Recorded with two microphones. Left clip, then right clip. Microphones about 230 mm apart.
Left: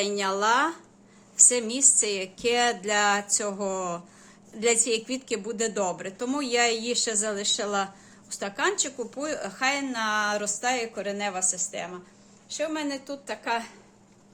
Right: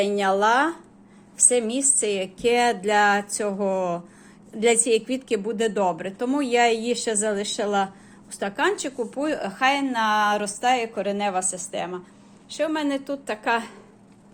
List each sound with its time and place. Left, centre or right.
0.0 s a woman's voice: centre; by 13.7 s right